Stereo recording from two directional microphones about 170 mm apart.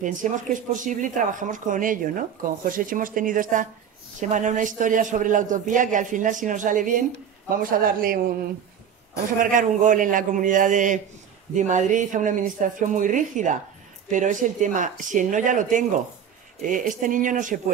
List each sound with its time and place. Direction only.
0.0 s speech: 50° right (ahead or behind)
9.4 s speech: 50° right (ahead or behind)